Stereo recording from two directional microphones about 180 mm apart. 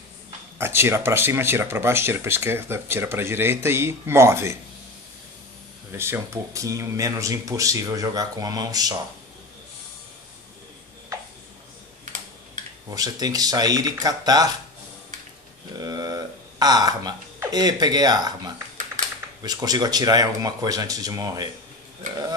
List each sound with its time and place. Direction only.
0.6 s speech: 15° right (ahead or behind)
5.9 s speech: 15° right (ahead or behind)
12.9 s speech: 20° right (ahead or behind)
15.8 s speech: 20° right (ahead or behind)